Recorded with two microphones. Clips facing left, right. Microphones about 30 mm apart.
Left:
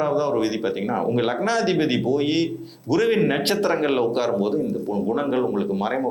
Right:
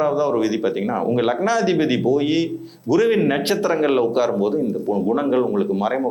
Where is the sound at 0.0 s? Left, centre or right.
Left.